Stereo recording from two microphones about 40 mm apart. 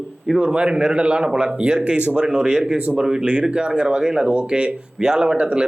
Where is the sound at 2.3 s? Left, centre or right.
Right.